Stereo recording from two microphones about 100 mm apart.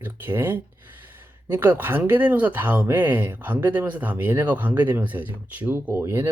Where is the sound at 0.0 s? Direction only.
20° right (ahead or behind).